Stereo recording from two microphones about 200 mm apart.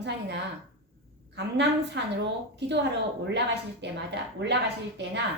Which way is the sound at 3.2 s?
60° right (ahead or behind).